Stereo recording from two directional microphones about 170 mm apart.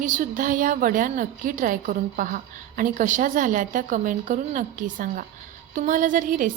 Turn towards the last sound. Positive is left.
turn(degrees=-50)  # may be behind; listen again after turning